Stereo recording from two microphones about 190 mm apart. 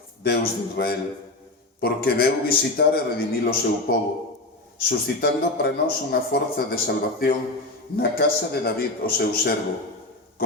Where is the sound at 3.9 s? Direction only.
50° left (ahead or behind).